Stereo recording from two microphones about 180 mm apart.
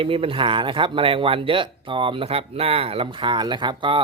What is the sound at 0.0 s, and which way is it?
Speech, 30° right (ahead or behind).